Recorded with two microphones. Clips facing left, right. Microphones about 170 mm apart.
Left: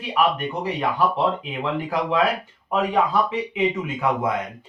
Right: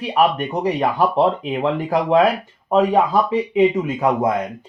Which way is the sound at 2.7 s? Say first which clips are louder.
Right 6 dB; 40° right (ahead or behind).